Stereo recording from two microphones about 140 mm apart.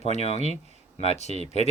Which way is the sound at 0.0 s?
50° left (ahead or behind).